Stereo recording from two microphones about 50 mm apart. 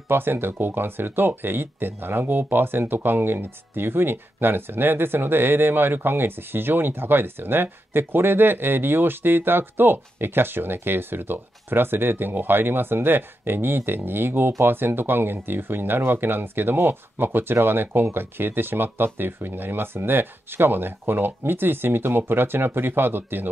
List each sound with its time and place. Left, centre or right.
0.1 s speech: right